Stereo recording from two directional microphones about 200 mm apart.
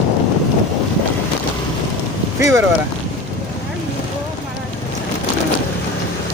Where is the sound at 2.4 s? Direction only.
15° right (ahead or behind).